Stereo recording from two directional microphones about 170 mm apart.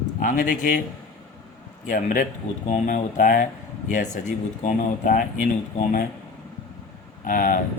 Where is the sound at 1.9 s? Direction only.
50° left (ahead or behind).